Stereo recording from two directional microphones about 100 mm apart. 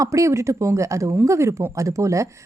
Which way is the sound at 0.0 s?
30° right (ahead or behind).